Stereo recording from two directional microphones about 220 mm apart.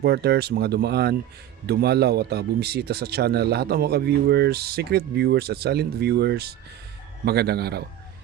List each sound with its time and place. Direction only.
0.0 s speech: 45° right (ahead or behind)